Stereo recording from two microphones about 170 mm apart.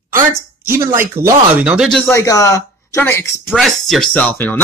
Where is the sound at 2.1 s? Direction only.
20° left (ahead or behind).